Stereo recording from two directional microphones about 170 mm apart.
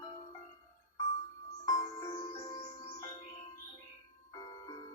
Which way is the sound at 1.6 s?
25° left (ahead or behind).